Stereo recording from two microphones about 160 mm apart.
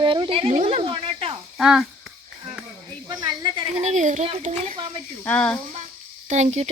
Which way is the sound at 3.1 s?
25° right (ahead or behind).